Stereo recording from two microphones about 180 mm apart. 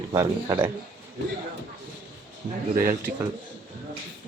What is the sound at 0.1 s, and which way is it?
Speech, 20° right (ahead or behind).